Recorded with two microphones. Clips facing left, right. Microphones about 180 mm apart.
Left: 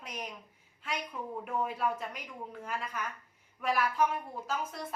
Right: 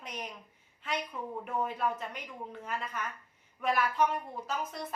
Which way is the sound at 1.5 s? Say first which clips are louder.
Even; 10° left (ahead or behind).